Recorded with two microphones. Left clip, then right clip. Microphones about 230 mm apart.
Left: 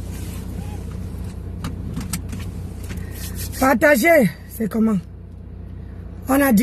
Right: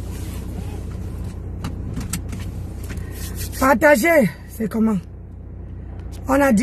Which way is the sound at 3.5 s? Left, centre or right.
Right.